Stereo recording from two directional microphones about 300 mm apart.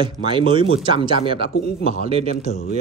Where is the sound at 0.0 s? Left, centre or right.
Centre.